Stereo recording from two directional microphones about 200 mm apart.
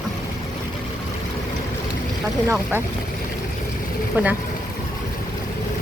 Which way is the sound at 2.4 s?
10° right (ahead or behind).